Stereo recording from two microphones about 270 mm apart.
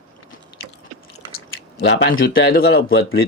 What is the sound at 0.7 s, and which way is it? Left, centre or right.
Chewing, left.